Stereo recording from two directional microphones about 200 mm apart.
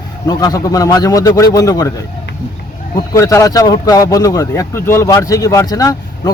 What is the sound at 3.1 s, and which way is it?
Speech, 15° left (ahead or behind).